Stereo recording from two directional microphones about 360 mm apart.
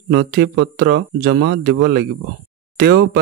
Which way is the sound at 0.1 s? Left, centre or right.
Right.